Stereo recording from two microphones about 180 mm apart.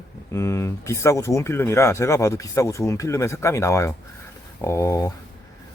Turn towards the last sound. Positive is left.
turn(degrees=15)  # may be behind; listen again after turning